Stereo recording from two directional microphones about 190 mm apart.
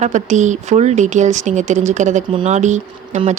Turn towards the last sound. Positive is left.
turn(degrees=-40)  # may be behind; listen again after turning